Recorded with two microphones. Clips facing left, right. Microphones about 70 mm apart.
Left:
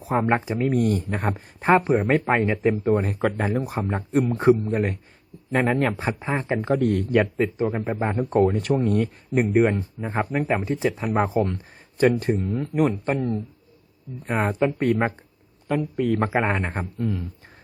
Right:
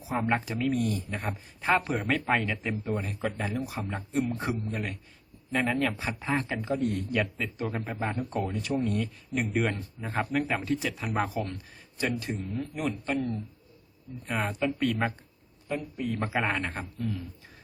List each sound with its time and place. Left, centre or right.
0.0 s speech: left
0.3 s speech: left
0.7 s speech: left
1.8 s speech: left
2.7 s speech: left
6.1 s speech: left
6.6 s speech: left
7.4 s speech: left
8.2 s speech: left
9.5 s speech: left
15.6 s speech: left
16.2 s speech: left